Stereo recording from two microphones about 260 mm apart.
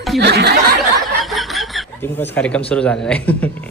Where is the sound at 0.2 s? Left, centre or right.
Right.